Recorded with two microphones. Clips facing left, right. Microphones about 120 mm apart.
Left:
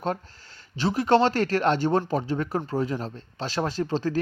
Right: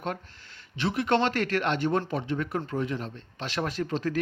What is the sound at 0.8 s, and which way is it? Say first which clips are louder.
Speech: left 5 dB; 35° left (ahead or behind).